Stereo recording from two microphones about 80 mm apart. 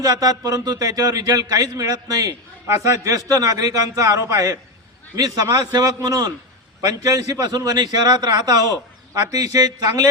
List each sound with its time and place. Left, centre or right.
0.0 s a man's voice: right
2.6 s a man's voice: right
2.9 s a man's voice: right